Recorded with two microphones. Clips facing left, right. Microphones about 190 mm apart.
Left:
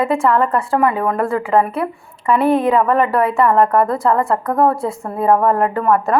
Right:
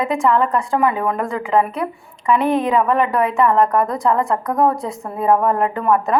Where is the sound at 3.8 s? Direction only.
15° right (ahead or behind).